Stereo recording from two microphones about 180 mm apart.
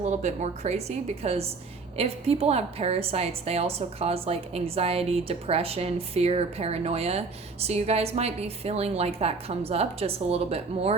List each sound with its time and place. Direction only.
0.0 s a woman's voice: 40° right (ahead or behind)